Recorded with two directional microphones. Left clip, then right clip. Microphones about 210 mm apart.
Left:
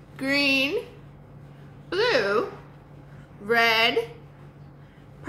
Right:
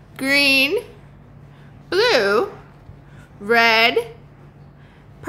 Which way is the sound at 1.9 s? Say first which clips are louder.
Right 6 dB; 50° right (ahead or behind).